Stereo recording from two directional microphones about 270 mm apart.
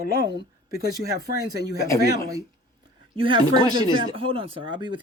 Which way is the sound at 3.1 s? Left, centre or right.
Centre.